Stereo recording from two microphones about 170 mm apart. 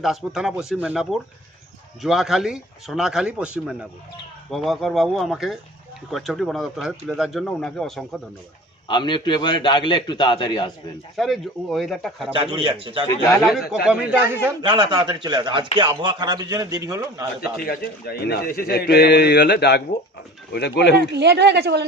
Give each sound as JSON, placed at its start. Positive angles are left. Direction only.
{"t": 0.0, "sound": "speech", "side_deg": 0}
{"t": 8.9, "sound": "a man's voice", "side_deg": 30}
{"t": 11.2, "sound": "speech", "side_deg": 0}
{"t": 12.3, "sound": "a man's voice", "side_deg": -30}
{"t": 13.4, "sound": "speech", "side_deg": 0}
{"t": 14.6, "sound": "a man's voice", "side_deg": -30}
{"t": 17.7, "sound": "a man's voice", "side_deg": 65}
{"t": 21.0, "sound": "a woman's voice", "side_deg": -85}